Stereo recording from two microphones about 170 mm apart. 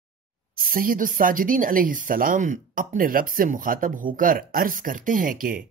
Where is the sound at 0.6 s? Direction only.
55° right (ahead or behind).